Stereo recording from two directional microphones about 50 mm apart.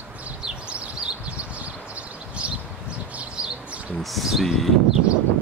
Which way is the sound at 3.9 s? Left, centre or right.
Centre.